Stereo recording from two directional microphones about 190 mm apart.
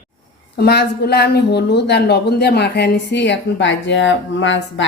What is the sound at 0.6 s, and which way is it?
Speech, 60° left (ahead or behind).